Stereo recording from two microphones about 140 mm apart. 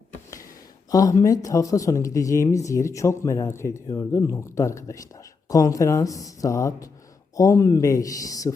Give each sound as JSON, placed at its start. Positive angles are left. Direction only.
{"t": 0.9, "sound": "speech", "side_deg": 25}